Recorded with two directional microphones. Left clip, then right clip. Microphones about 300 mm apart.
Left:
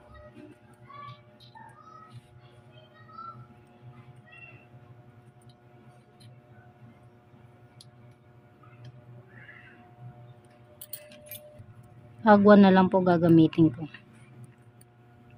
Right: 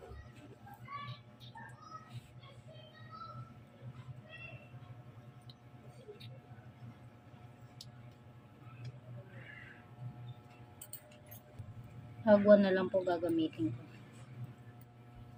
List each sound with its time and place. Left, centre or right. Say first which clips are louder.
12.2 s a woman's voice: left 7 dB; left